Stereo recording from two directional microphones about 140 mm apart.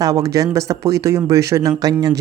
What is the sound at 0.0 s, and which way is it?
Speech, 25° right (ahead or behind).